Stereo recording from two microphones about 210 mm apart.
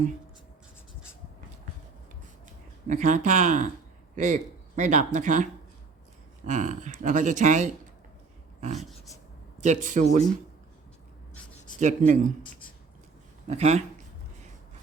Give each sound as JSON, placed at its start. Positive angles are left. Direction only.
{"t": 2.8, "sound": "a man's voice", "side_deg": -35}
{"t": 11.8, "sound": "speech", "side_deg": -35}
{"t": 13.5, "sound": "speech", "side_deg": -30}